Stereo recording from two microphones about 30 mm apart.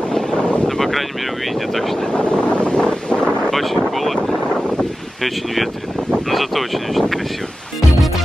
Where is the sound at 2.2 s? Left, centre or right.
Left.